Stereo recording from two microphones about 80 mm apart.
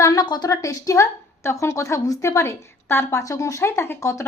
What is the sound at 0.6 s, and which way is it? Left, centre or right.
A woman's voice, left.